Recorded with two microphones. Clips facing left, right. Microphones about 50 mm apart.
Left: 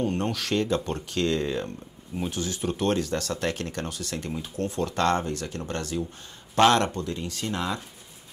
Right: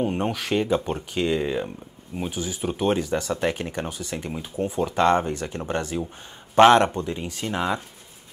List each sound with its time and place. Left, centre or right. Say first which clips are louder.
0.0 s speech: right 2 dB; centre